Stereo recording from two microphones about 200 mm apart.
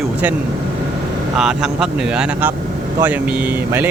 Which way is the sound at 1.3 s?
5° right (ahead or behind).